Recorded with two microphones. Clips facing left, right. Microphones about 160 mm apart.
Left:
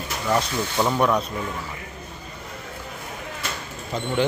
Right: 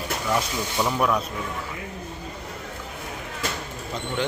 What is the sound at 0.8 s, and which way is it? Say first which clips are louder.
Speech: left 3 dB; 15° left (ahead or behind).